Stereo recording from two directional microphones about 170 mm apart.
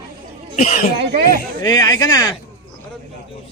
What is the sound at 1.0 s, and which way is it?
Speech, 65° right (ahead or behind).